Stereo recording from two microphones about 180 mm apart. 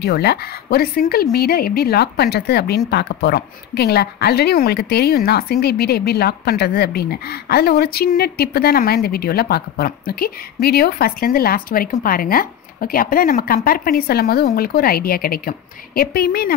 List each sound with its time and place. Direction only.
0.0 s a woman's voice: 60° left (ahead or behind)